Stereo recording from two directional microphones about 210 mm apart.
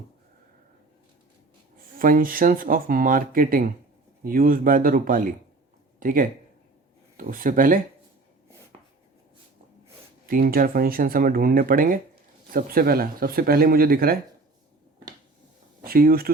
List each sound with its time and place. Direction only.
2.0 s speech: 40° right (ahead or behind)
8.7 s a sound: 25° right (ahead or behind)
10.2 s speech: 45° right (ahead or behind)
15.8 s speech: 45° right (ahead or behind)